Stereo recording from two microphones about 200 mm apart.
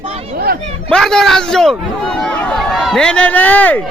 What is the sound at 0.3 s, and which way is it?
Speech, 50° right (ahead or behind).